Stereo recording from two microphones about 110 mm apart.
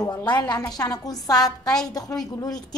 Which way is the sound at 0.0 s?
35° left (ahead or behind).